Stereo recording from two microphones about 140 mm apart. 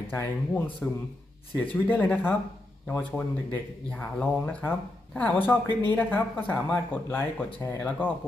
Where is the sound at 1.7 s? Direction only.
10° left (ahead or behind).